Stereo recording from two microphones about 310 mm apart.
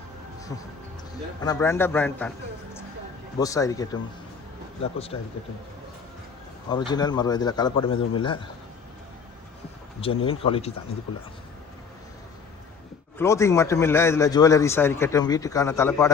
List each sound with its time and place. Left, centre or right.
1.5 s a man's voice: centre
3.3 s a man's voice: centre
6.7 s a man's voice: centre
10.2 s a man's voice: centre
13.1 s a man's voice: centre